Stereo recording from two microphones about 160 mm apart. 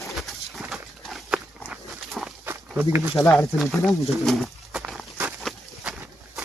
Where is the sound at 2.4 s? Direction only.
10° right (ahead or behind).